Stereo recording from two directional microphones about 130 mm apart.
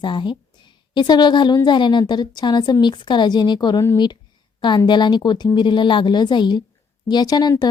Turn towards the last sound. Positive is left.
turn(degrees=30)  # may be behind; listen again after turning